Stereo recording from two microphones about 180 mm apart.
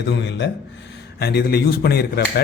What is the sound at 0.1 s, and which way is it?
Speech, 80° left.